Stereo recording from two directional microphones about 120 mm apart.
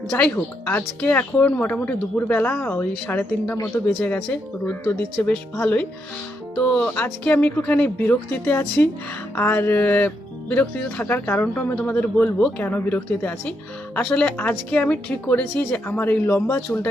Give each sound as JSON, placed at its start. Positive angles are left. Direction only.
{"t": 0.1, "sound": "speech", "side_deg": 15}